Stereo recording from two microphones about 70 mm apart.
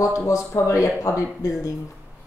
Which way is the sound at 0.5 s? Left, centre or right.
Left.